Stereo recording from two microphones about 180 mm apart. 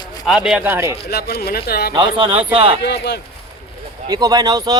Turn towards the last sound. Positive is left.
turn(degrees=-20)  # may be behind; listen again after turning